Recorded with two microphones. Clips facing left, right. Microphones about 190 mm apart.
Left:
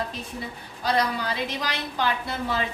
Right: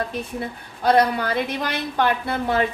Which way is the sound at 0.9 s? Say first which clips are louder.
Right 7 dB; 60° right (ahead or behind).